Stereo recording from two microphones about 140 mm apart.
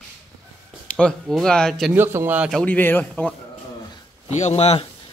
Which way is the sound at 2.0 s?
15° right (ahead or behind).